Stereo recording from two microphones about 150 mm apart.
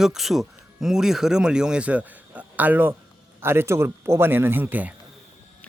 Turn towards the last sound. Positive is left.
turn(degrees=-10)  # may be behind; listen again after turning